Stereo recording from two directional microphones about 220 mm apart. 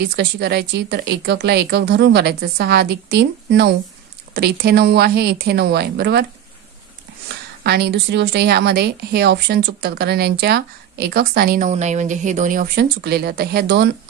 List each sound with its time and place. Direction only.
0.0 s a woman's voice: 50° right (ahead or behind)
7.6 s a woman's voice: 50° right (ahead or behind)